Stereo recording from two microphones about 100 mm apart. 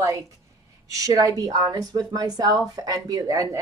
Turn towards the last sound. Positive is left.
turn(degrees=-35)  # may be behind; listen again after turning